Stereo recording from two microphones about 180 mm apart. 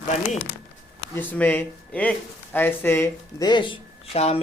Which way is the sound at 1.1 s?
10° left (ahead or behind).